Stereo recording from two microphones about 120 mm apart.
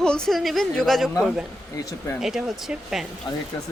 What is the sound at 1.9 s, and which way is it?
Speech, 25° left (ahead or behind).